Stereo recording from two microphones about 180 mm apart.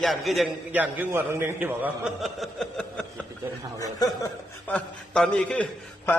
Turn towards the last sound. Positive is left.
turn(degrees=10)  # may be behind; listen again after turning